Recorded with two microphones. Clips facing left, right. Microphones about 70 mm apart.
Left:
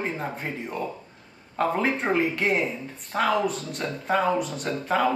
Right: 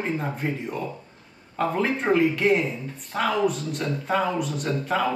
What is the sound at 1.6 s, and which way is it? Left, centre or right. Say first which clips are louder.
A man's voice: even; centre.